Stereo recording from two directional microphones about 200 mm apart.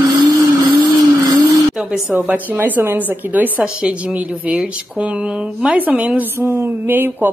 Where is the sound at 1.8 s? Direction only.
5° right (ahead or behind).